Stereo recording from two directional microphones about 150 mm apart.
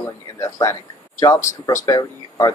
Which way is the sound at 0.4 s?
20° left (ahead or behind).